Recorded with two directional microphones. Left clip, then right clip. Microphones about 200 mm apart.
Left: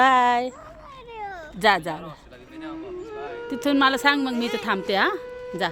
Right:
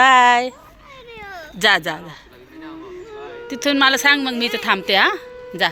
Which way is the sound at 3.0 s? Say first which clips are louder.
Right 1 dB; centre (ahead or behind).